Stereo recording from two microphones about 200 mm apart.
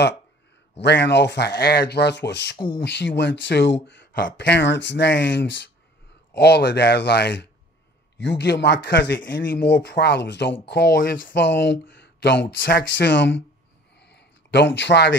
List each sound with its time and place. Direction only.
0.7 s speech: 55° left (ahead or behind)
2.5 s speech: 25° left (ahead or behind)
2.9 s speech: 60° left (ahead or behind); by 11.2 s 45° left (ahead or behind)
11.2 s speech: 65° left (ahead or behind)
11.8 s speech: 50° left (ahead or behind)
13.9 s a sound: 60° left (ahead or behind)